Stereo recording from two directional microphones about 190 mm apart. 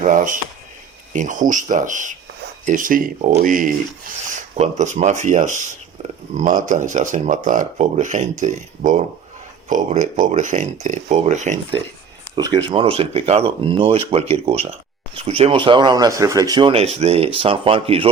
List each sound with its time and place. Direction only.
0.0 s speech: 45° right (ahead or behind)
12.4 s speech: 25° right (ahead or behind)